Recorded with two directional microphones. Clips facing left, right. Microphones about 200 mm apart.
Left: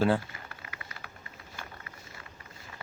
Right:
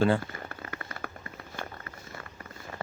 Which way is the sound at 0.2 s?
45° right (ahead or behind).